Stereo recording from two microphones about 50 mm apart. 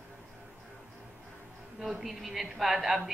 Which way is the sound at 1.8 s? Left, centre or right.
Centre.